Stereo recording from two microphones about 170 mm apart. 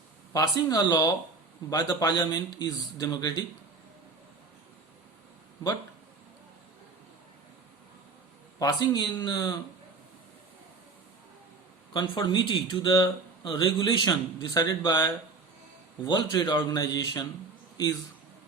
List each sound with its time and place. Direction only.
0.3 s speech: 20° left (ahead or behind)
8.5 s speech: 20° left (ahead or behind)
11.9 s speech: 25° left (ahead or behind)